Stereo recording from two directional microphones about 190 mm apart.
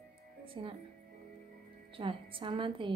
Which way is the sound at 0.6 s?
30° right (ahead or behind).